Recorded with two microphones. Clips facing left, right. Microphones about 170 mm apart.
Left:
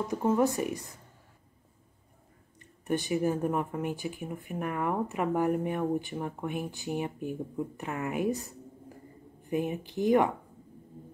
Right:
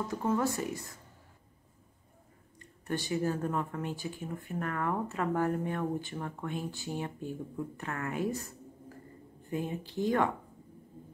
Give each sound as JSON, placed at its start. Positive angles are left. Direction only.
{"t": 0.1, "sound": "speech", "side_deg": 20}
{"t": 2.9, "sound": "speech", "side_deg": 15}